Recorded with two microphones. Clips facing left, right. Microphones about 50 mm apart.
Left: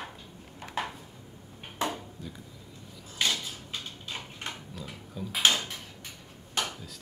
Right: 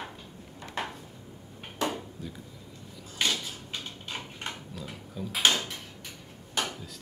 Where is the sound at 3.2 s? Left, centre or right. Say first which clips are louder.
Even; centre.